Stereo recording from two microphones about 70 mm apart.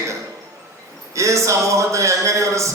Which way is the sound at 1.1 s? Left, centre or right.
Right.